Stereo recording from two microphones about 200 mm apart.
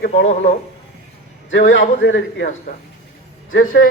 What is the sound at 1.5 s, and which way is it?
A man's voice, 65° left (ahead or behind).